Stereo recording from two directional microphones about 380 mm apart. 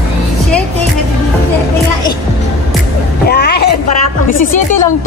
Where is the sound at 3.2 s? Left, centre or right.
Left.